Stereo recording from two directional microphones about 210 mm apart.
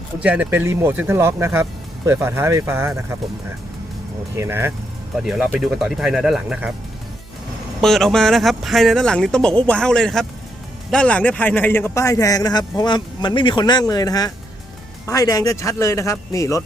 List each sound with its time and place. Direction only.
0.2 s speech: 5° right (ahead or behind)
4.4 s speech: 10° right (ahead or behind)
7.8 s a man's voice: centre (ahead or behind)